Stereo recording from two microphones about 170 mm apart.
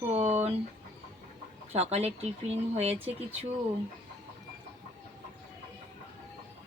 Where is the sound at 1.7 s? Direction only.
40° right (ahead or behind).